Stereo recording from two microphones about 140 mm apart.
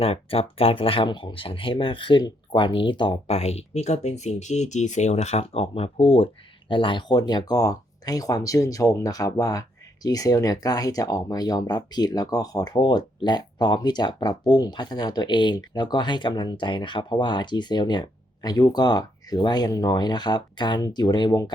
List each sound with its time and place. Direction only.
0.0 s speech: 45° left (ahead or behind)